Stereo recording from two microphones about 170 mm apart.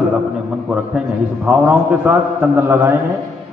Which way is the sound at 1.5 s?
5° right (ahead or behind).